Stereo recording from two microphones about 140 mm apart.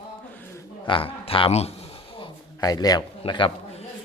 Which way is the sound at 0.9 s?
40° left (ahead or behind).